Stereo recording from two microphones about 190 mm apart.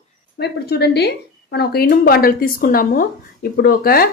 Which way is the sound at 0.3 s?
60° left (ahead or behind).